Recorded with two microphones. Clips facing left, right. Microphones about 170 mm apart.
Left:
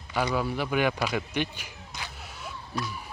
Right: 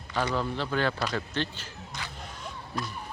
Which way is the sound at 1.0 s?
15° left (ahead or behind).